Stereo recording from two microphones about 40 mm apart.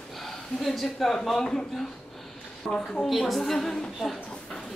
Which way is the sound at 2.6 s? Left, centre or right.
Centre.